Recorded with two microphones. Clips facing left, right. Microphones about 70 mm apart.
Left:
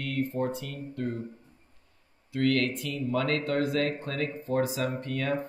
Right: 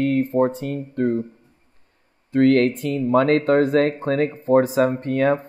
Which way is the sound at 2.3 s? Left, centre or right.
Right.